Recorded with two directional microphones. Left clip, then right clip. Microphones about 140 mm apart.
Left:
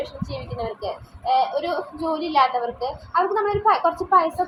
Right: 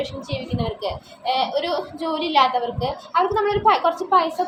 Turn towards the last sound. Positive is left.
turn(degrees=-5)  # may be behind; listen again after turning